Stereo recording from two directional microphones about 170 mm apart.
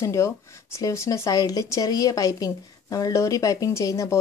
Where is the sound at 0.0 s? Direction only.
15° left (ahead or behind).